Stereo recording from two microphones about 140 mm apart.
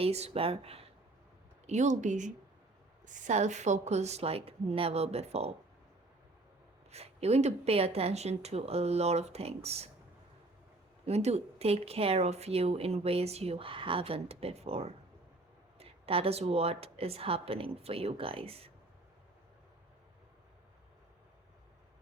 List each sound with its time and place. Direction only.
0.0 s speech: 45° right (ahead or behind)
1.6 s speech: 60° right (ahead or behind)
6.9 s speech: 50° right (ahead or behind)
11.0 s speech: 50° right (ahead or behind)